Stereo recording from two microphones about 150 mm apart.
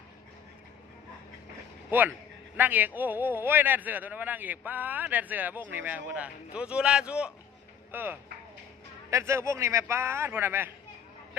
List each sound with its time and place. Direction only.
1.9 s a man's voice: 10° right (ahead or behind)